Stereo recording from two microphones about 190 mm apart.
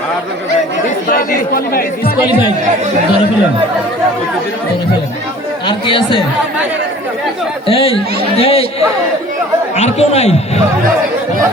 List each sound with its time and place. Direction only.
1.0 s speech: 50° left (ahead or behind)
5.6 s speech: 25° left (ahead or behind)
7.7 s speech: 30° left (ahead or behind)
9.7 s speech: 35° left (ahead or behind)